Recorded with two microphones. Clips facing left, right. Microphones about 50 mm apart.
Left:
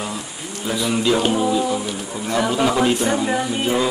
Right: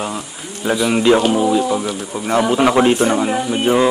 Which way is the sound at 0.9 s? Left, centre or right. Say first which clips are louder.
Right 6 dB; right.